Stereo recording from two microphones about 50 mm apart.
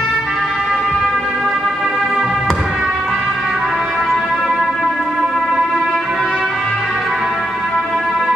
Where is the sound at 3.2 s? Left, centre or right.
Centre.